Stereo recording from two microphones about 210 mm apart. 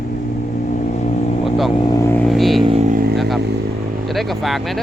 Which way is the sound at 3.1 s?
Centre (ahead or behind).